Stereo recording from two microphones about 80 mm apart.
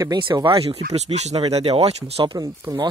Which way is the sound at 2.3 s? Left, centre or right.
Right.